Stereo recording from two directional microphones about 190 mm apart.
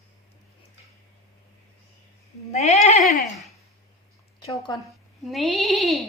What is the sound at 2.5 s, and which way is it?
Speech, 35° left (ahead or behind).